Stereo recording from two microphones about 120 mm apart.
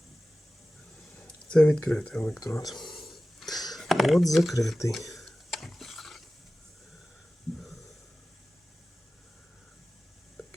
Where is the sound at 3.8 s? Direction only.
Centre (ahead or behind).